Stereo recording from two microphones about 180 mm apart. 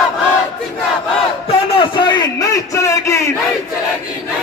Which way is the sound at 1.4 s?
30° left (ahead or behind).